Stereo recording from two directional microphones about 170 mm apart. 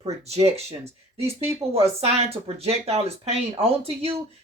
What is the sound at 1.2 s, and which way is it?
Speech, 15° right (ahead or behind).